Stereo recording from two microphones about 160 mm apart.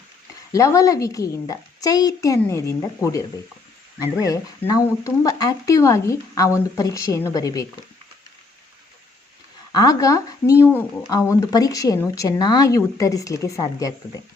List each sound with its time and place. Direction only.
0.5 s speech: 20° left (ahead or behind)
9.7 s speech: 20° left (ahead or behind)
11.3 s speech: 20° left (ahead or behind)